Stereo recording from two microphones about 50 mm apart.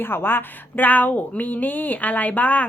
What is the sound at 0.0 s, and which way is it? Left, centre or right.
Speech, left.